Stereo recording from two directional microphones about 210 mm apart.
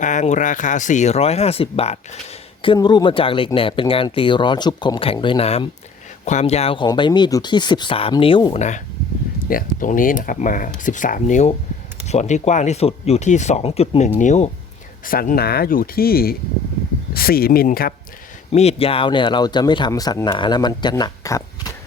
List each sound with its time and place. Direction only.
0.0 s speech: 35° left (ahead or behind)
8.5 s speech: 35° left (ahead or behind)
18.5 s speech: 30° left (ahead or behind)